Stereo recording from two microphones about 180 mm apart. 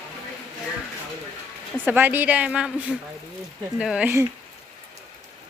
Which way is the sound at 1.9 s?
10° right (ahead or behind).